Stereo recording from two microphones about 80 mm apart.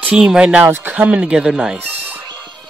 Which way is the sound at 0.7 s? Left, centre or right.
Right.